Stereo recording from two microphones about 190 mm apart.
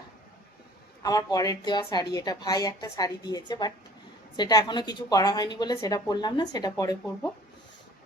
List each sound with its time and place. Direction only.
1.0 s a woman's voice: 20° left (ahead or behind)